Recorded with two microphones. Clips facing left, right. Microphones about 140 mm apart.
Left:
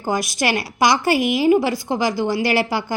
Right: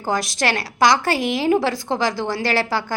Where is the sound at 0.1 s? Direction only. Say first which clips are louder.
Left 1 dB; 10° left (ahead or behind).